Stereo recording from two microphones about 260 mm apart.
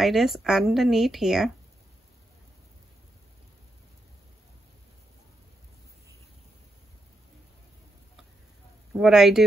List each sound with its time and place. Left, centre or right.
0.0 s speech: centre
8.9 s speech: centre